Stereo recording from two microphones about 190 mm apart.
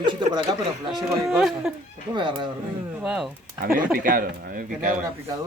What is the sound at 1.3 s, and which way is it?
Speech, 5° right (ahead or behind).